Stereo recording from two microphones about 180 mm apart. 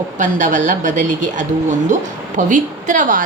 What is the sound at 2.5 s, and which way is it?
Speech, 45° right (ahead or behind).